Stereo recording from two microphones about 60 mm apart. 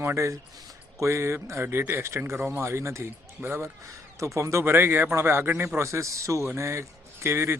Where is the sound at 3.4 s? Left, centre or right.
Right.